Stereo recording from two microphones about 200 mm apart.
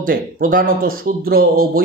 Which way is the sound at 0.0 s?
45° right (ahead or behind).